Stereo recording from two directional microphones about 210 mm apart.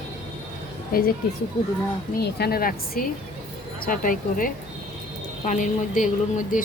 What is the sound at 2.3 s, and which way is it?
A woman's voice, 45° left (ahead or behind).